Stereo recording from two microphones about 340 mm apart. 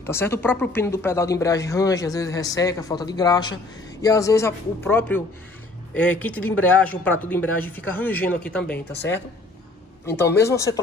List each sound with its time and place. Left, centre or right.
0.0 s speech: centre
8.7 s speech: left
10.0 s speech: centre